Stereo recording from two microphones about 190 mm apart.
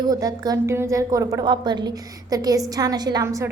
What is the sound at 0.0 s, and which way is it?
A woman's voice, 20° right (ahead or behind).